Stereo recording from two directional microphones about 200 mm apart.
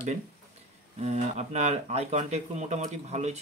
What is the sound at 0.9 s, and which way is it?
Speech, 35° right (ahead or behind).